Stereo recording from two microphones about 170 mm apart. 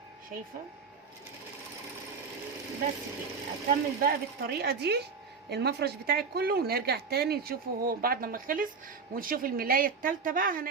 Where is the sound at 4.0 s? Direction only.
65° right (ahead or behind).